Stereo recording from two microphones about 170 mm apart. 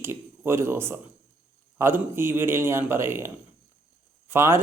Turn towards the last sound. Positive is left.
turn(degrees=-15)  # may be behind; listen again after turning